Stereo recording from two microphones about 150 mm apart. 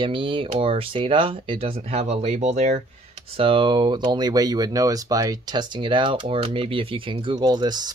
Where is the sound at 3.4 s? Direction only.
35° right (ahead or behind).